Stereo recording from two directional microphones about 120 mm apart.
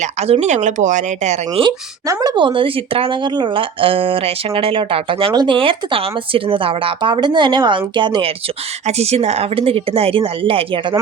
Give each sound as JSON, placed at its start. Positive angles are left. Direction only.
{"t": 0.0, "sound": "speech", "side_deg": -65}
{"t": 1.6, "sound": "speech", "side_deg": -50}
{"t": 2.2, "sound": "speech", "side_deg": -40}
{"t": 8.9, "sound": "speech", "side_deg": -60}